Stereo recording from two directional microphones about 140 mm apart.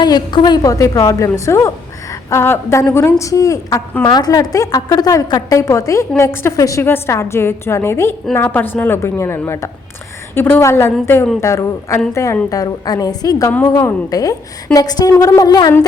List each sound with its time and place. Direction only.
0.0 s a woman's voice: 30° left (ahead or behind)
13.5 s a woman's voice: 15° left (ahead or behind)